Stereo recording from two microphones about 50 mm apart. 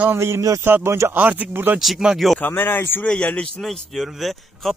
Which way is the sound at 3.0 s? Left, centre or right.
Left.